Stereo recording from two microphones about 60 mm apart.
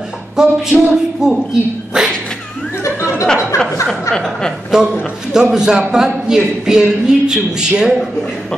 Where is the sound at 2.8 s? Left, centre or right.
Left.